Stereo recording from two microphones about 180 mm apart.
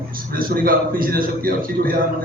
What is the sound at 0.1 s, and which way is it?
Speech, 50° right (ahead or behind).